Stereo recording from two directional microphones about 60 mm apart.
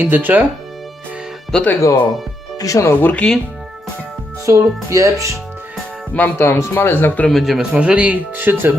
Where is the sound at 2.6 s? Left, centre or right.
Left.